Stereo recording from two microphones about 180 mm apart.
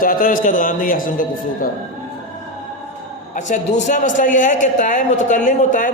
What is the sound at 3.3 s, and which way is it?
A man's voice, 45° left (ahead or behind).